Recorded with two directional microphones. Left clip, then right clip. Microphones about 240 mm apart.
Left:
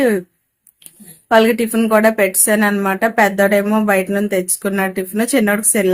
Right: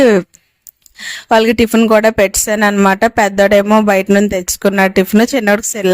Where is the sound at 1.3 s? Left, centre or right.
Right.